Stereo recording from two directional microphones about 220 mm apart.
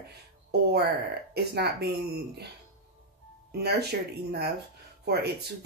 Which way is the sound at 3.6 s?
45° right (ahead or behind).